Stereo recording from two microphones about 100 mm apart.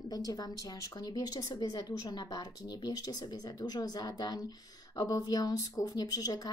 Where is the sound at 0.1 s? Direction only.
40° left (ahead or behind).